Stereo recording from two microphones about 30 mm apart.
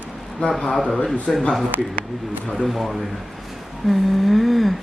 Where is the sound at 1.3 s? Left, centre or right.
Centre.